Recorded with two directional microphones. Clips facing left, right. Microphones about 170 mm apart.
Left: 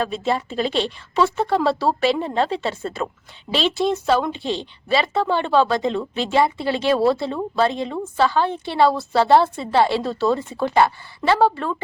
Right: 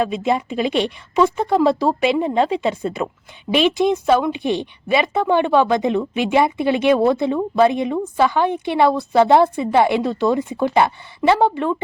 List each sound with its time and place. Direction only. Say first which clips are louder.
0.0 s a woman's voice: right 3 dB; 10° right (ahead or behind)